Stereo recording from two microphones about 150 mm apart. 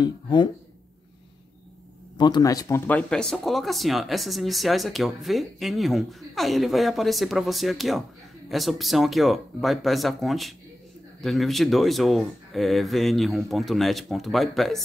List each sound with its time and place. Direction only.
0.0 s speech: 30° left (ahead or behind)
2.1 s speech: 30° left (ahead or behind)
2.9 s speech: 5° left (ahead or behind)